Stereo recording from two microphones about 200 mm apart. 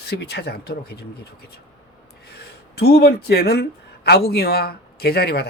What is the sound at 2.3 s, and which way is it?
Speech, 55° left (ahead or behind).